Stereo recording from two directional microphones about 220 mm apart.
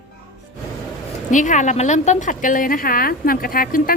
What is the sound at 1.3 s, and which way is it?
A woman's voice, 35° left (ahead or behind).